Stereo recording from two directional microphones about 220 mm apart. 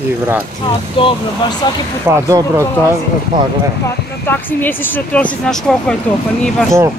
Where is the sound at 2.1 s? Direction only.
15° right (ahead or behind).